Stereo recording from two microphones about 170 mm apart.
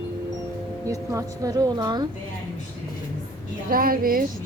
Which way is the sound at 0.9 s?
20° right (ahead or behind).